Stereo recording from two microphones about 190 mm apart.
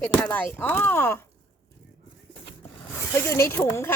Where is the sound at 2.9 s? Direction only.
15° left (ahead or behind).